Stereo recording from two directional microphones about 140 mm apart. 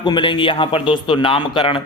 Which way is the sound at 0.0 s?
35° left (ahead or behind).